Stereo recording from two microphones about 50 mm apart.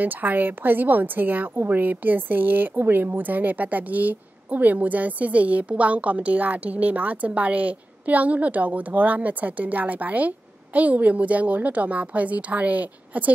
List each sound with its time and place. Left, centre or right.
0.0 s a woman's voice: right